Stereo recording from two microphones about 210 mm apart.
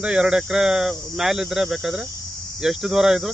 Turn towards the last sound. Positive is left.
turn(degrees=0)  # may be behind; listen again after turning